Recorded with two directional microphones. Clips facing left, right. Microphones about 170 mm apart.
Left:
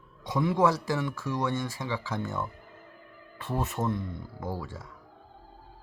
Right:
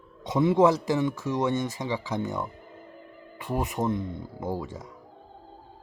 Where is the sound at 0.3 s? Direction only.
20° right (ahead or behind).